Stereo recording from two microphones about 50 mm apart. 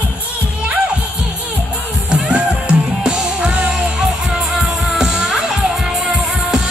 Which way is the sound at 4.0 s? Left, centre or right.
Centre.